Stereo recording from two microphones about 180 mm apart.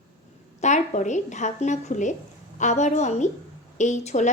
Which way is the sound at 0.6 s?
40° left (ahead or behind).